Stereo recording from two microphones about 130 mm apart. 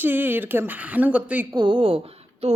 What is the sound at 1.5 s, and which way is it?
Speech, 35° right (ahead or behind).